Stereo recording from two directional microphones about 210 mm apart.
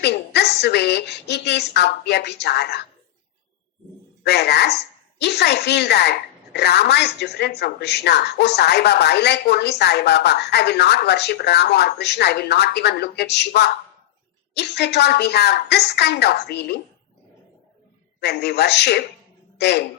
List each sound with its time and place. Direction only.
0.0 s a woman's voice: 50° left (ahead or behind)
4.2 s a woman's voice: 50° left (ahead or behind)
18.2 s a woman's voice: 50° left (ahead or behind)